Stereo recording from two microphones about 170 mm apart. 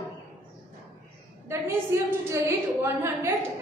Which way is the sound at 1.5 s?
15° right (ahead or behind).